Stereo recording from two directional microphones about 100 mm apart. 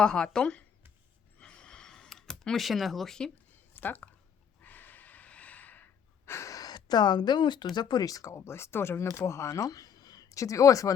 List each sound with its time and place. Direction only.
0.0 s speech: 10° left (ahead or behind)
1.4 s a sound: 10° left (ahead or behind)
3.8 s speech: 15° left (ahead or behind)
4.6 s gasp: 15° left (ahead or behind); by 7.7 s 50° left (ahead or behind)
7.8 s speech: 40° left (ahead or behind)